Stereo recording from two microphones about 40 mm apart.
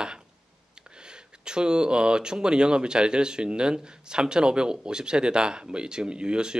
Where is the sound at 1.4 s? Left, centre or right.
Right.